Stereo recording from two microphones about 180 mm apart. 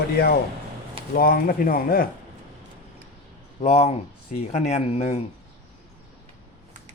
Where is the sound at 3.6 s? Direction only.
35° left (ahead or behind).